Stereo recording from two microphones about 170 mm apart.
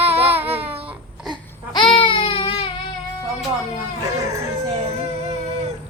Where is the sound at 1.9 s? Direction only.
30° left (ahead or behind).